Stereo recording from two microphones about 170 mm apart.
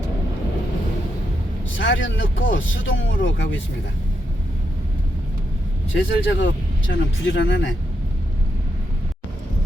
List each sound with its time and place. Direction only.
1.8 s speech: 90° left
5.9 s speech: 90° left